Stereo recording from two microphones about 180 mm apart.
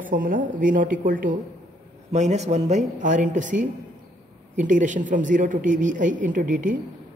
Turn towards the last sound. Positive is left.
turn(degrees=-45)  # may be behind; listen again after turning